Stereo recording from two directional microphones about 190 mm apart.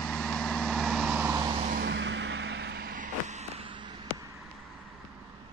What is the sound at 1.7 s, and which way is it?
Vehicle, 55° right (ahead or behind).